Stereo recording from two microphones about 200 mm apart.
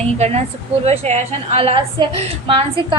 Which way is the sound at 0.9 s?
35° right (ahead or behind).